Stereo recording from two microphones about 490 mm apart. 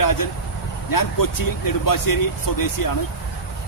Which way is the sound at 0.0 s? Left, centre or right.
Left.